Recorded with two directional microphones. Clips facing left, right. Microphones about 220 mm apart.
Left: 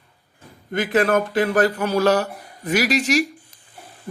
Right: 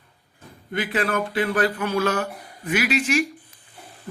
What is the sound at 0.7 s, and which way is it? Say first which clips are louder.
Speech: left 6 dB; 45° left (ahead or behind).